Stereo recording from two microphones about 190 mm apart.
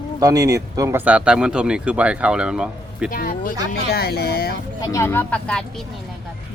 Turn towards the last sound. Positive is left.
turn(degrees=5)  # may be behind; listen again after turning